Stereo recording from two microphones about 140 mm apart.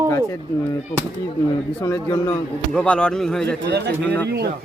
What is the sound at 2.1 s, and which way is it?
Speech, 20° left (ahead or behind).